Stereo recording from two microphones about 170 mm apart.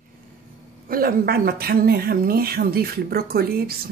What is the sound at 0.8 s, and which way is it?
Speech, 60° right (ahead or behind).